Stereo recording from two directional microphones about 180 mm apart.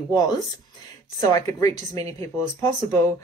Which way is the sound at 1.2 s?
20° left (ahead or behind).